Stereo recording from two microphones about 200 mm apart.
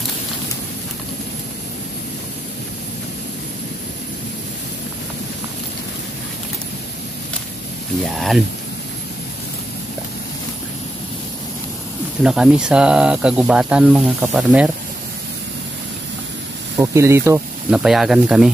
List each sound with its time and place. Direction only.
8.0 s speech: centre (ahead or behind)
12.2 s speech: 5° right (ahead or behind)
16.8 s speech: 15° right (ahead or behind)